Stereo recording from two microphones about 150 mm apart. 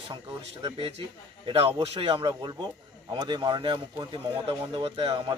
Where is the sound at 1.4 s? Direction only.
40° right (ahead or behind).